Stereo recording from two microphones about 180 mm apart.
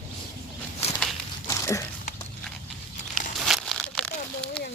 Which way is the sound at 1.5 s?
15° left (ahead or behind).